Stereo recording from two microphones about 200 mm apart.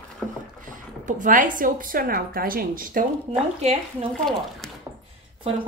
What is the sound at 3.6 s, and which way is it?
Speech, 35° right (ahead or behind).